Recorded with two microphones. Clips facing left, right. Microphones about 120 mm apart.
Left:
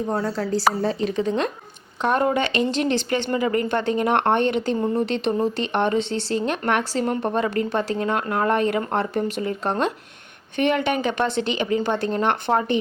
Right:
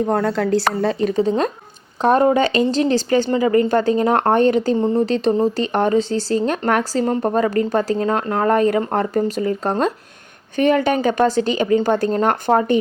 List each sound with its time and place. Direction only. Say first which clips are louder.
0.1 s speech: right 6 dB; 60° right (ahead or behind)
1.1 s speech: right 5 dB; 35° right (ahead or behind)